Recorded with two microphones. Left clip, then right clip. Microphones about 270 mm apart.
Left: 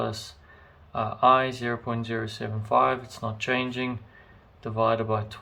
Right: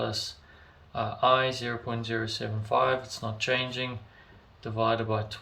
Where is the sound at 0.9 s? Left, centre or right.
Centre.